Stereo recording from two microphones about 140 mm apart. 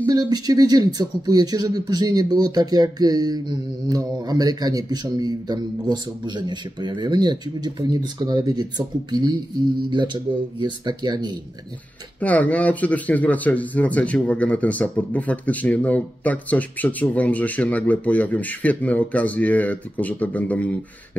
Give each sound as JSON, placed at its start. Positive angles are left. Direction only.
{"t": 0.0, "sound": "speech", "side_deg": -30}
{"t": 12.2, "sound": "speech", "side_deg": 10}